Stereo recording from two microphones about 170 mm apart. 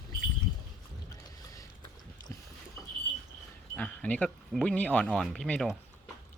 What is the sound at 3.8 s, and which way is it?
Speech, 10° left (ahead or behind).